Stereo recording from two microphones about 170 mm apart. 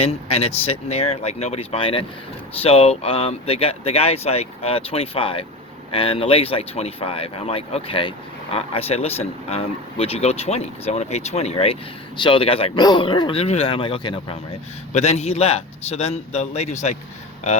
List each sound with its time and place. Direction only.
0.0 s speech: 35° left (ahead or behind)
14.9 s speech: 40° left (ahead or behind)